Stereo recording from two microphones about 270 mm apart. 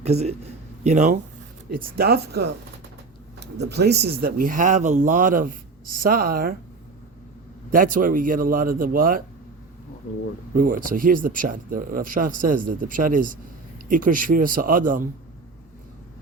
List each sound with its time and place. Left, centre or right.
0.0 s a man's voice: right
7.7 s speech: right
10.5 s speech: right